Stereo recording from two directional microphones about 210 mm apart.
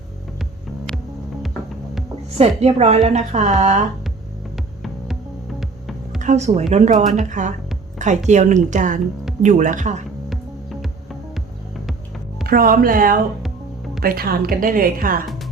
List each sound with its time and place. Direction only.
0.9 s music: 5° left (ahead or behind)
2.4 s a woman's voice: 30° right (ahead or behind)
4.5 s music: centre (ahead or behind)
6.1 s a woman's voice: 35° right (ahead or behind)
12.5 s speech: 45° right (ahead or behind)